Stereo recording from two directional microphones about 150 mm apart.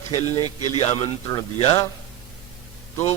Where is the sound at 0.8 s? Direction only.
45° left (ahead or behind).